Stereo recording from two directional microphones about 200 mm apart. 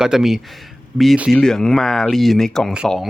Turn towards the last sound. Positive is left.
turn(degrees=-5)  # may be behind; listen again after turning